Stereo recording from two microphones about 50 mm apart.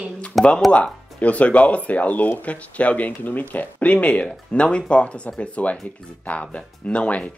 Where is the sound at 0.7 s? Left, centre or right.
Left.